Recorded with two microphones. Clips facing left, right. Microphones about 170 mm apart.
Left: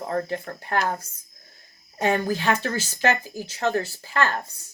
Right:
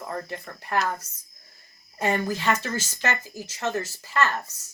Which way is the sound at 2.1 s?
35° left (ahead or behind).